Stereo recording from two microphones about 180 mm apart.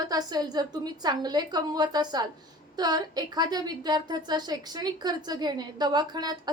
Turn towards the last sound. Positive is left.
turn(degrees=-20)  # may be behind; listen again after turning